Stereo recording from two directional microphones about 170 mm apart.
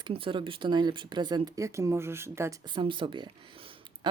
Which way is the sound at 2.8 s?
30° right (ahead or behind).